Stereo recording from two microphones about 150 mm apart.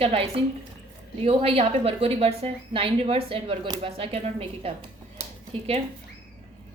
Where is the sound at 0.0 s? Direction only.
40° right (ahead or behind).